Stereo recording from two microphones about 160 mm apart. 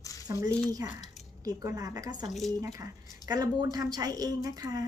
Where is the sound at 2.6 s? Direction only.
20° right (ahead or behind).